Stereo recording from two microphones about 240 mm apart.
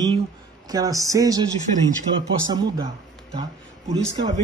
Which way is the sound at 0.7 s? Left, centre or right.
Centre.